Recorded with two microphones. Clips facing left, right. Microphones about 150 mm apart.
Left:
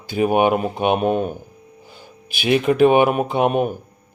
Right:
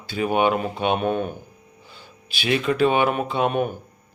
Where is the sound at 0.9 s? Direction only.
10° left (ahead or behind).